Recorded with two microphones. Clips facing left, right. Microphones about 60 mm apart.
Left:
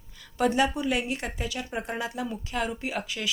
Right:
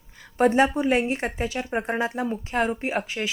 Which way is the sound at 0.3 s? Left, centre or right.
Right.